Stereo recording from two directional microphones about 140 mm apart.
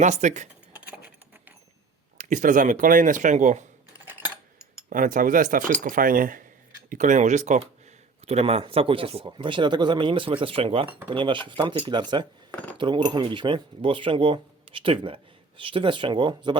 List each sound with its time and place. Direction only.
0.0 s speech: 60° right (ahead or behind)
0.8 s a sound: 10° right (ahead or behind)
2.1 s speech: 65° right (ahead or behind)
4.9 s speech: 75° right (ahead or behind)
5.8 s speech: 85° right
6.9 s speech: 60° right (ahead or behind)
8.3 s speech: 45° right (ahead or behind)